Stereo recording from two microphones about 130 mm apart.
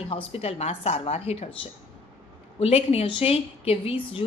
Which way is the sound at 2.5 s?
50° left (ahead or behind).